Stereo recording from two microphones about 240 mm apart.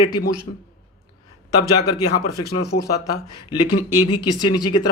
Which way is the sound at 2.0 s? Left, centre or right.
Left.